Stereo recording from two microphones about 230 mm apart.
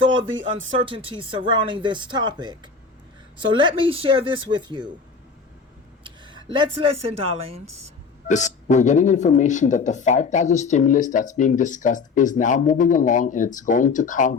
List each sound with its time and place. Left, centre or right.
0.0 s speech: right
6.0 s a sound: centre
7.2 s speech: right
8.3 s speech: left